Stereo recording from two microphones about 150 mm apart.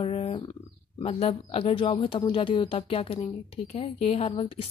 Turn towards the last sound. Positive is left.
turn(degrees=40)  # may be behind; listen again after turning